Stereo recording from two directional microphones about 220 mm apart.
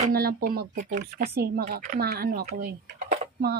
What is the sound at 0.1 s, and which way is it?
Speech, 45° right (ahead or behind).